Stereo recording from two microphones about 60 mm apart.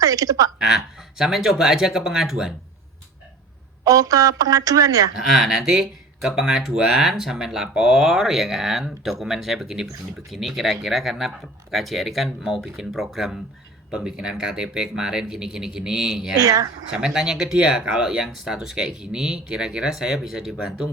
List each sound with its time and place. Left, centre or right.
0.0 s speech: right
0.6 s speech: centre
3.8 s speech: right
5.3 s speech: centre
16.4 s speech: right
17.2 s speech: centre